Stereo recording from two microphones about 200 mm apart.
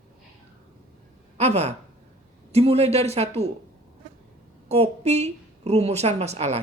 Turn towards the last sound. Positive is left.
turn(degrees=-30)  # may be behind; listen again after turning